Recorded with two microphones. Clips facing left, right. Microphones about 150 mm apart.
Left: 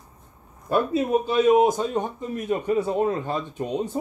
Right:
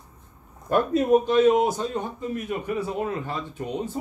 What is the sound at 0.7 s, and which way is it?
A man's voice, 10° left (ahead or behind).